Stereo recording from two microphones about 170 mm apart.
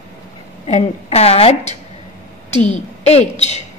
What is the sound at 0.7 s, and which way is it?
Speech, 40° left (ahead or behind).